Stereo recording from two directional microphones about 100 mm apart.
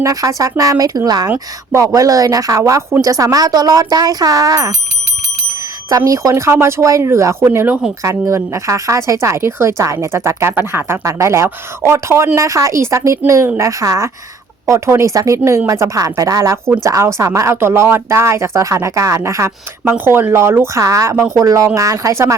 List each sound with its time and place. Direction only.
0.0 s speech: 35° right (ahead or behind)
6.1 s speech: 30° right (ahead or behind)